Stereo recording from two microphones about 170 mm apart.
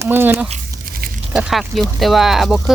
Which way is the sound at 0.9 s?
60° right (ahead or behind).